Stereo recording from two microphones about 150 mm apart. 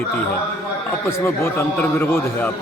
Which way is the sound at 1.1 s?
15° left (ahead or behind).